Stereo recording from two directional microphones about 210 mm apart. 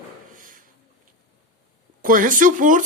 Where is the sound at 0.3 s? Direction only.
40° right (ahead or behind).